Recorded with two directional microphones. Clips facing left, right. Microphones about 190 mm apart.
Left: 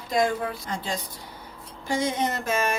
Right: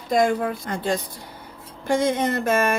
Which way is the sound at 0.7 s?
55° right (ahead or behind).